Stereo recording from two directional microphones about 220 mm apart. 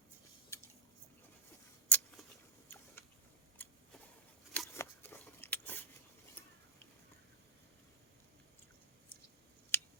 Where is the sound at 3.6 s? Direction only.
5° left (ahead or behind).